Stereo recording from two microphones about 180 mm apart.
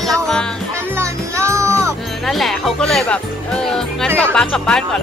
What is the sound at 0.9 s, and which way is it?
Music, 15° right (ahead or behind).